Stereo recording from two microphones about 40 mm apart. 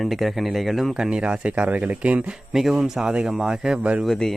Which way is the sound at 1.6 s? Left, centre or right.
Right.